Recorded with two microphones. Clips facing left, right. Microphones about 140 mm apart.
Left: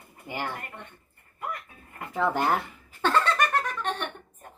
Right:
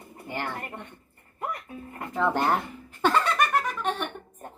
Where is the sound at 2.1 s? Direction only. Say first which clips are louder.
Right 1 dB; centre (ahead or behind).